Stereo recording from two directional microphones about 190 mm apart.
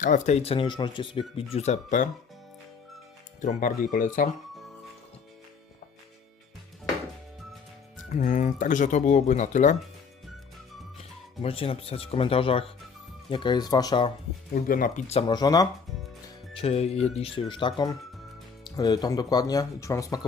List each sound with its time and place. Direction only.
0.0 s speech: 40° left (ahead or behind)
3.4 s speech: 45° left (ahead or behind)
8.1 s speech: 40° left (ahead or behind)
11.4 s speech: 30° left (ahead or behind)
14.5 s speech: 45° left (ahead or behind)
15.3 s speech: 20° left (ahead or behind)
16.6 s speech: 35° left (ahead or behind); by 20.2 s 15° left (ahead or behind)